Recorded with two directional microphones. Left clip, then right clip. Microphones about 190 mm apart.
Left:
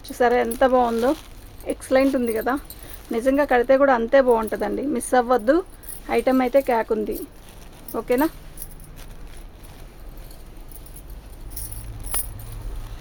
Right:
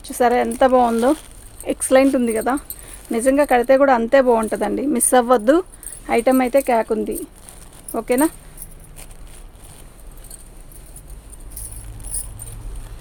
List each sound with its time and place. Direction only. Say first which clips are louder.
0.0 s speech: right 2 dB; 40° right (ahead or behind)
1.6 s speech: right 5 dB; 60° right (ahead or behind)
6.1 s speech: right 3 dB; 45° right (ahead or behind)